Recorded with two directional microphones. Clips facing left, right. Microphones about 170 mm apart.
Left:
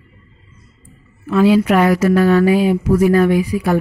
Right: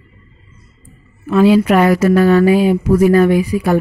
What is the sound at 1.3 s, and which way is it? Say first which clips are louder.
A woman's voice: right 2 dB; 25° right (ahead or behind).